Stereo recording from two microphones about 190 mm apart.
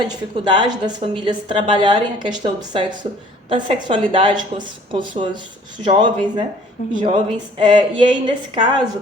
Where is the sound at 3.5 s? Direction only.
25° right (ahead or behind).